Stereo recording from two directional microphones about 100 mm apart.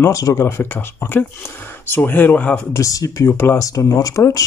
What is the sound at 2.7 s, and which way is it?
Speech, 30° left (ahead or behind).